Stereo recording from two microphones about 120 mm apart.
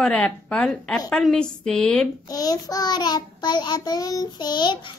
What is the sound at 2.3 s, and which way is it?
Child singing, 30° left (ahead or behind).